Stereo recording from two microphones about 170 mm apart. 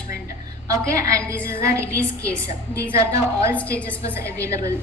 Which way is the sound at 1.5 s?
15° right (ahead or behind).